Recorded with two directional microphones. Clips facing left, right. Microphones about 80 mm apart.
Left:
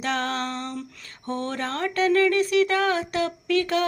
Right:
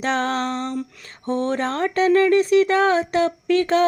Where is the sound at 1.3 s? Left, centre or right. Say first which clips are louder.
Right 6 dB; right.